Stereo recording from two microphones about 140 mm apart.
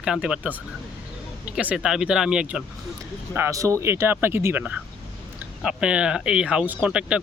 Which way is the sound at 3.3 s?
20° right (ahead or behind).